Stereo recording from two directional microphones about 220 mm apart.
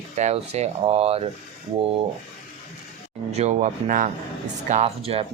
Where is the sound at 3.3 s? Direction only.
30° right (ahead or behind).